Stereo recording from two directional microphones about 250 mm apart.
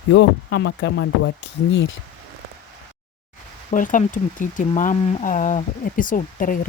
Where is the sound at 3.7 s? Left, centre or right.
Left.